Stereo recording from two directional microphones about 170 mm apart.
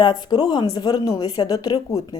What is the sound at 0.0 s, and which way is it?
A woman's voice, 25° left (ahead or behind).